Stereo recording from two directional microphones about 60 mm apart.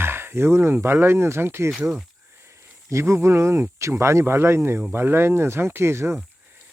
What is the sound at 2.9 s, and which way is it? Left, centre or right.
Speech, right.